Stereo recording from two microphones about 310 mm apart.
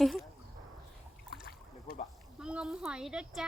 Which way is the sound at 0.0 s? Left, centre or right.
Centre.